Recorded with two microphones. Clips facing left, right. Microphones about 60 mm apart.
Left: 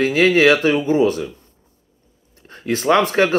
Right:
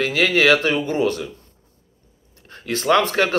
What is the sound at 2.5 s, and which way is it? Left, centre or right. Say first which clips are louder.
Speech: left 2 dB; left.